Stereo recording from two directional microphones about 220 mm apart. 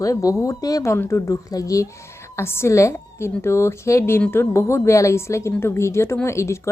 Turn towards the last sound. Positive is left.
turn(degrees=15)  # may be behind; listen again after turning